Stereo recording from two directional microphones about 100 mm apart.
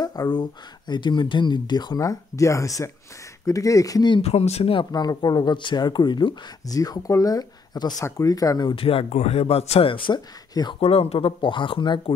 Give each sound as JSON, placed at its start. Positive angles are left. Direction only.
{"t": 0.0, "sound": "speech", "side_deg": 40}
{"t": 4.2, "sound": "speech", "side_deg": 90}
{"t": 4.9, "sound": "speech", "side_deg": 40}
{"t": 8.7, "sound": "a man's voice", "side_deg": 70}
{"t": 10.8, "sound": "speech", "side_deg": 85}